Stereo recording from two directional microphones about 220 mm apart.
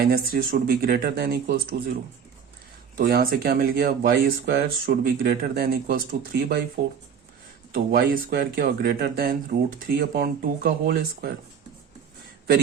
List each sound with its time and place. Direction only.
0.0 s speech: 45° right (ahead or behind)
3.0 s speech: 45° right (ahead or behind)